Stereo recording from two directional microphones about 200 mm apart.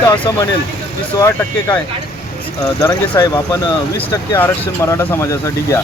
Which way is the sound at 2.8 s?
15° left (ahead or behind).